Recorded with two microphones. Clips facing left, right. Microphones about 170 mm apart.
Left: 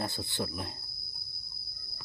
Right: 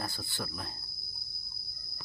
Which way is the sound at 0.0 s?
20° left (ahead or behind).